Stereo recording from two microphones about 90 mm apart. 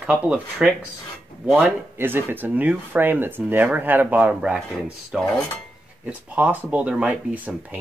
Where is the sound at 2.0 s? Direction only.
25° right (ahead or behind).